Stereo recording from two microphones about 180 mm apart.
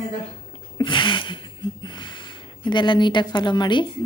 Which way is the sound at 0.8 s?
25° left (ahead or behind).